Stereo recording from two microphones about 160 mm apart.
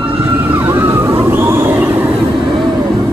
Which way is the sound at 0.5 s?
15° right (ahead or behind).